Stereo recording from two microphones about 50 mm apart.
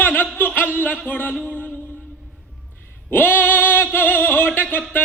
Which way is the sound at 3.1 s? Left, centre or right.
Left.